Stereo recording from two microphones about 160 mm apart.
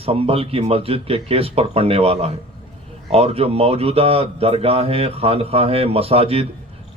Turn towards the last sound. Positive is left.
turn(degrees=-40)  # may be behind; listen again after turning